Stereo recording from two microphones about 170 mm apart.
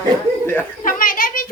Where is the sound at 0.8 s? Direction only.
55° left (ahead or behind).